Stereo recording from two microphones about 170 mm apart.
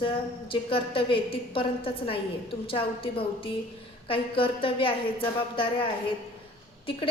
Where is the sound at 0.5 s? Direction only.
30° left (ahead or behind).